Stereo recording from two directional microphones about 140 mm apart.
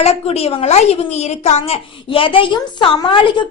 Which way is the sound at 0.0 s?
45° left (ahead or behind).